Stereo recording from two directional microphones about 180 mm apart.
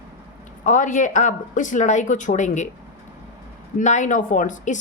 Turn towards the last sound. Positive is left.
turn(degrees=45)  # may be behind; listen again after turning